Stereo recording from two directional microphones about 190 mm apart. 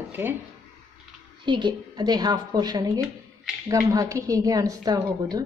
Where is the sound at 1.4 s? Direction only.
25° right (ahead or behind).